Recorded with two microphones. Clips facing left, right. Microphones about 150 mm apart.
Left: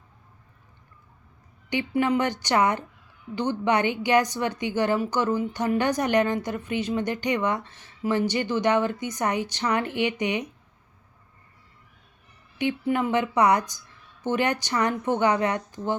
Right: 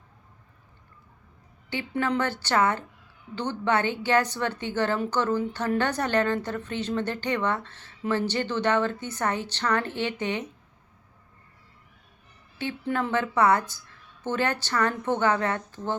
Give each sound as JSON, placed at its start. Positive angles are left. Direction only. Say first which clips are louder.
{"t": 1.7, "sound": "a woman's voice", "louder": "left 4 dB", "side_deg": 15}
{"t": 12.5, "sound": "a woman's voice", "louder": "left 4 dB", "side_deg": 15}